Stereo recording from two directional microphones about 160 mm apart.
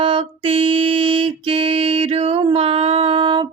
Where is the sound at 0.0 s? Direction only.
35° right (ahead or behind).